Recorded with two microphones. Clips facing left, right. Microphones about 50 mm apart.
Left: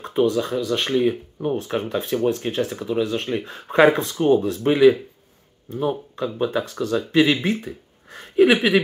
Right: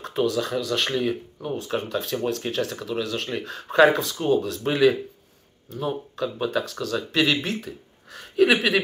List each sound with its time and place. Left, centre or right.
0.0 s speech: left
0.9 s speech: left
3.7 s speech: left